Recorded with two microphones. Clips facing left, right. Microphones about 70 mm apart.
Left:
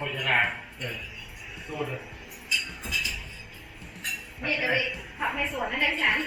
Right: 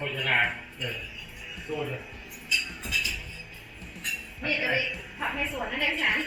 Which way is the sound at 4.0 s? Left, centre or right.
Centre.